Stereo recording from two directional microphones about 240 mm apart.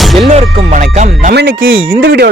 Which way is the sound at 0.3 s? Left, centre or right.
Right.